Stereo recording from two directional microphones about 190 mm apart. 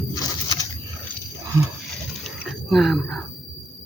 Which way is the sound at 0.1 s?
20° left (ahead or behind).